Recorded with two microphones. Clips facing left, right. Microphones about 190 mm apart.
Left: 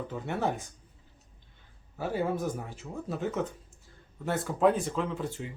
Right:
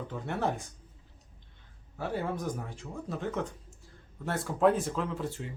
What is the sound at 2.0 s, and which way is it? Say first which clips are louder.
Speech: left 3 dB; 5° left (ahead or behind).